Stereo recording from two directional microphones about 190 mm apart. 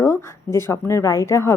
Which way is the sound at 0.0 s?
15° left (ahead or behind).